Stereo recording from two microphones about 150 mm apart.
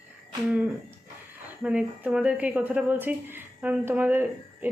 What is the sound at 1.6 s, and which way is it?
Speech, 5° right (ahead or behind).